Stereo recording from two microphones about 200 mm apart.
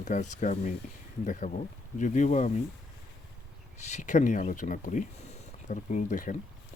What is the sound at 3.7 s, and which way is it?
Speech, 35° left (ahead or behind).